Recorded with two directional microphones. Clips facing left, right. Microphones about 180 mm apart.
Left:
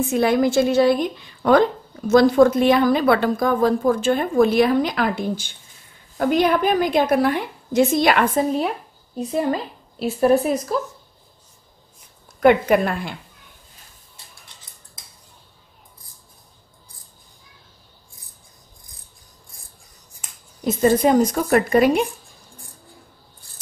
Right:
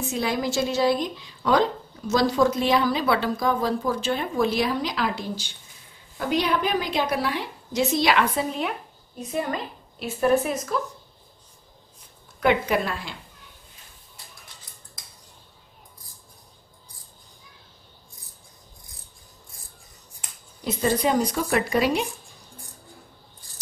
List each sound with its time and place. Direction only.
0.1 s a woman's voice: 55° left (ahead or behind)
9.2 s speech: 35° left (ahead or behind)
12.4 s a woman's voice: 50° left (ahead or behind)
20.6 s a woman's voice: 45° left (ahead or behind)